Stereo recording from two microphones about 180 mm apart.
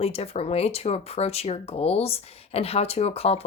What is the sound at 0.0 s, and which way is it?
Speech, 35° left (ahead or behind).